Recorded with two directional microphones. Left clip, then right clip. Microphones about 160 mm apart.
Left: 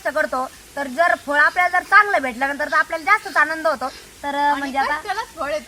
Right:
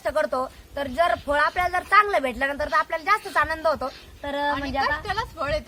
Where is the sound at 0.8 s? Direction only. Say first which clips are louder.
Left 4 dB; 50° right (ahead or behind).